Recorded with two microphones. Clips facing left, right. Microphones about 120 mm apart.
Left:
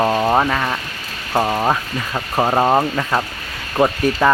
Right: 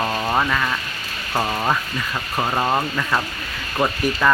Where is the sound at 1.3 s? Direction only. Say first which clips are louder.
Left 4 dB; 20° left (ahead or behind).